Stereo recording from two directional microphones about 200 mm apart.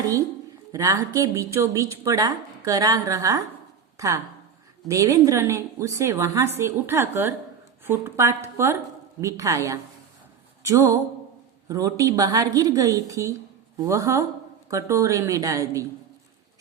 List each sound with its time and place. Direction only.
0.7 s speech: 15° right (ahead or behind)